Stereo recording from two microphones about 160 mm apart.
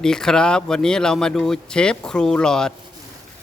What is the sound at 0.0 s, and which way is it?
Speech, 5° left (ahead or behind).